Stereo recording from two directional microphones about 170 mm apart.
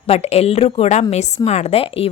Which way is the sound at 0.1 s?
35° left (ahead or behind).